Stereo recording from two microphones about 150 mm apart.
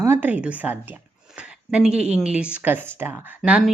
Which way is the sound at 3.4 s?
5° right (ahead or behind).